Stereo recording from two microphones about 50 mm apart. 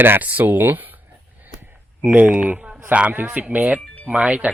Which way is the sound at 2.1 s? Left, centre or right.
Right.